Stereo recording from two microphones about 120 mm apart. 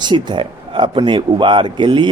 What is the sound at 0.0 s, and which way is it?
Mantra, 40° right (ahead or behind).